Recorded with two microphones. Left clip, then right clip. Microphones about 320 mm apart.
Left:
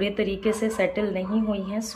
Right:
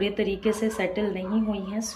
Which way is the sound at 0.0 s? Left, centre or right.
Centre.